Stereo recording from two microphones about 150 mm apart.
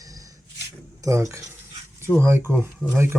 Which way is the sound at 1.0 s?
20° right (ahead or behind).